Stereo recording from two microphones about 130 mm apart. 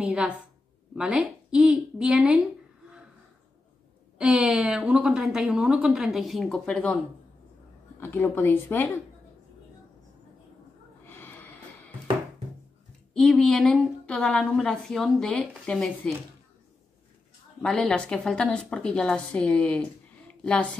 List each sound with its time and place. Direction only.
0.0 s a woman's voice: 5° right (ahead or behind)
4.2 s a woman's voice: 5° right (ahead or behind)
8.0 s a woman's voice: 15° left (ahead or behind)
11.1 s a sound: 15° left (ahead or behind)
13.1 s a woman's voice: centre (ahead or behind)
17.6 s a woman's voice: 5° left (ahead or behind)